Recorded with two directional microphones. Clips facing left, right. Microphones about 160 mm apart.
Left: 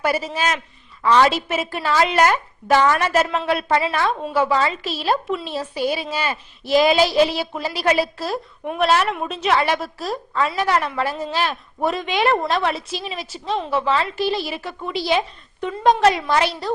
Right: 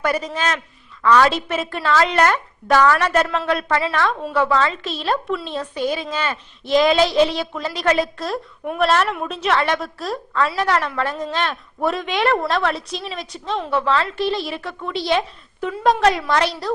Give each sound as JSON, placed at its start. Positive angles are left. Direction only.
{"t": 0.0, "sound": "a woman's voice", "side_deg": 5}
{"t": 1.0, "sound": "a woman's voice", "side_deg": 25}
{"t": 1.3, "sound": "a woman's voice", "side_deg": 5}